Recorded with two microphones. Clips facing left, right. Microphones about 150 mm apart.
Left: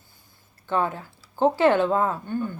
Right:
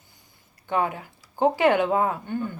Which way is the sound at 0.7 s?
15° right (ahead or behind).